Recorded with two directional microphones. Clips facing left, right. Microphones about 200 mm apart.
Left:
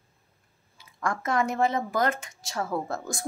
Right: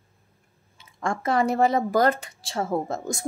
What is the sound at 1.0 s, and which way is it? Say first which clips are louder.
A woman's voice: right 3 dB; 30° right (ahead or behind).